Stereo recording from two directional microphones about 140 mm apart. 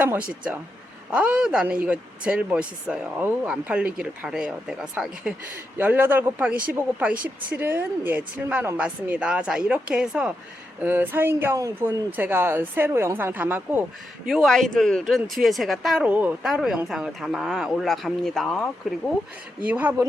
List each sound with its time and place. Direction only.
0.0 s speech: 10° right (ahead or behind)
14.3 s speech: centre (ahead or behind)
19.6 s speech: 10° right (ahead or behind)